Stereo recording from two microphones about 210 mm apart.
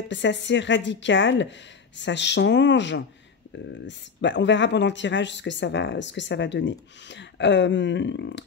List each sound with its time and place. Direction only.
0.1 s speech: 60° left (ahead or behind)